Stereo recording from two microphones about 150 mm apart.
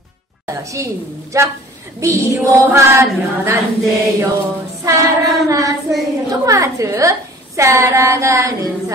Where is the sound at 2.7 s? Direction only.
15° right (ahead or behind).